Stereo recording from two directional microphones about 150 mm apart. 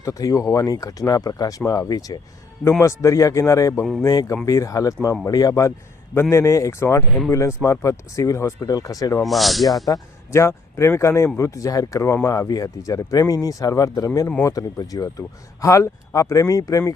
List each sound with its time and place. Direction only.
0.0 s speech: 20° left (ahead or behind)
9.2 s speech: centre (ahead or behind)
9.8 s speech: 20° left (ahead or behind)